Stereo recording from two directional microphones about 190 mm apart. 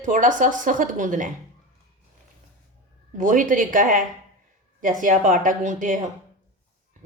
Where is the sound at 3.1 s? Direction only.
40° right (ahead or behind).